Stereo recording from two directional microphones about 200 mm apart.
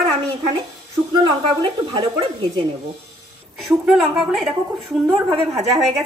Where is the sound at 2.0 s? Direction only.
25° right (ahead or behind).